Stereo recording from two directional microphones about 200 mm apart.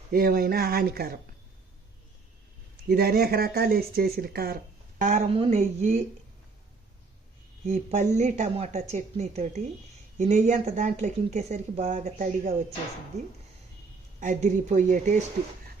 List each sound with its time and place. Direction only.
0.1 s speech: 50° right (ahead or behind)
2.9 s speech: 50° right (ahead or behind)
7.7 s speech: 35° right (ahead or behind)
14.2 s speech: 40° right (ahead or behind)